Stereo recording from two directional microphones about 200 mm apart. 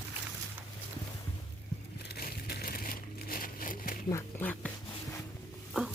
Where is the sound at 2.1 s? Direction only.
50° left (ahead or behind).